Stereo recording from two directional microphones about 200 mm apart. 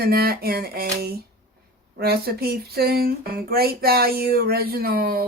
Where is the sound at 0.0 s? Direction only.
50° right (ahead or behind).